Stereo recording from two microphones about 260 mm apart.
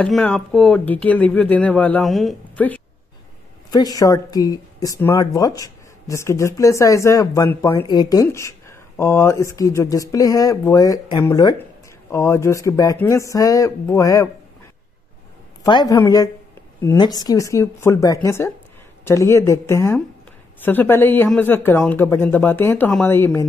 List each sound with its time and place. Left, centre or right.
0.0 s a woman's voice: centre
15.6 s a woman's voice: centre